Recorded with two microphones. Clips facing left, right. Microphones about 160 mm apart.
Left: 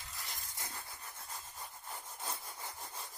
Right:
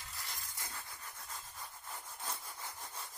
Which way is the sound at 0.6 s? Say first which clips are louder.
Left 1 dB; 20° left (ahead or behind).